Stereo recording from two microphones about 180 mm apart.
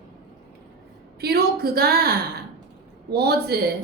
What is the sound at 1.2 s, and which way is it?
A woman's voice, 60° right (ahead or behind).